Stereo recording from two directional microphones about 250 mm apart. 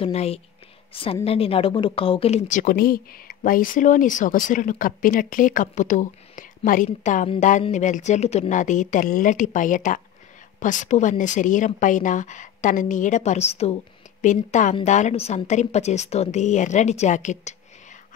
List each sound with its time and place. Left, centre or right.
0.0 s a woman's voice: left